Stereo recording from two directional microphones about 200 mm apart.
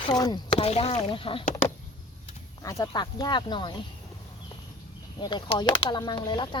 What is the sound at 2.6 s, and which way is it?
Speech, 15° left (ahead or behind).